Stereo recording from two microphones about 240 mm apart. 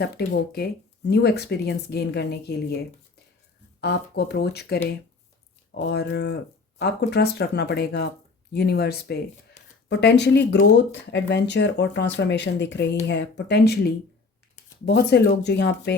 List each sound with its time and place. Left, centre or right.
0.0 s speech: left